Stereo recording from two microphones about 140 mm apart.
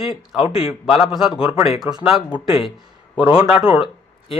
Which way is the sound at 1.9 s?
15° right (ahead or behind).